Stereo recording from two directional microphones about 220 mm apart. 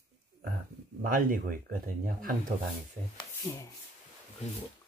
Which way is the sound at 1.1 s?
40° right (ahead or behind).